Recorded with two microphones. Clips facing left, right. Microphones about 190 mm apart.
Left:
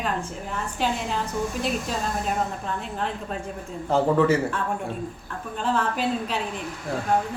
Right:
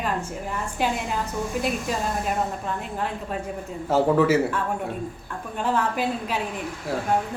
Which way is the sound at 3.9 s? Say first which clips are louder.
Right 1 dB; 5° right (ahead or behind).